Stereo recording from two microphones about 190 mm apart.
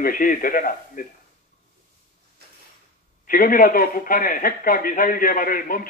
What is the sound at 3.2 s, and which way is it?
A man's voice, 50° left (ahead or behind).